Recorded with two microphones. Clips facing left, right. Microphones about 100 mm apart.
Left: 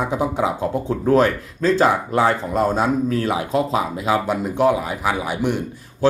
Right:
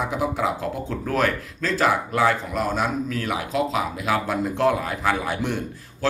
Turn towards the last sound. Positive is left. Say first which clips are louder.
# left 2 dB
turn(degrees=15)  # may be behind; listen again after turning